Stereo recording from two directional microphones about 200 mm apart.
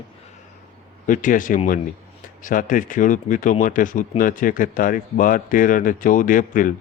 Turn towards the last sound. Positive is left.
turn(degrees=40)  # may be behind; listen again after turning